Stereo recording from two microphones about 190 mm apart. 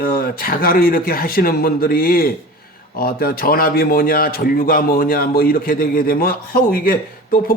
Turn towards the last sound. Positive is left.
turn(degrees=50)  # may be behind; listen again after turning